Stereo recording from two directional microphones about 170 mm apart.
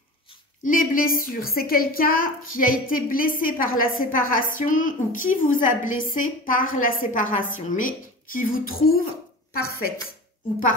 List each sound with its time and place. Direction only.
0.7 s a woman's voice: 55° left (ahead or behind)